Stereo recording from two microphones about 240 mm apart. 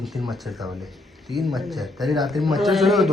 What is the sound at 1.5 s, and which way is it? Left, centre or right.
A man's voice, centre.